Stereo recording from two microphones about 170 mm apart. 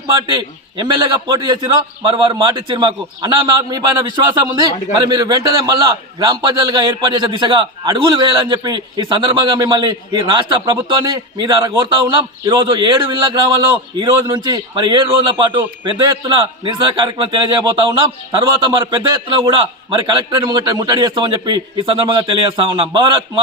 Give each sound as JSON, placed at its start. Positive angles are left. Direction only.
{"t": 0.1, "sound": "a man's voice", "side_deg": -25}